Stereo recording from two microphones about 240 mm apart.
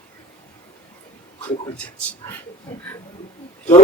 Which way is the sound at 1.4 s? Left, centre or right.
Centre.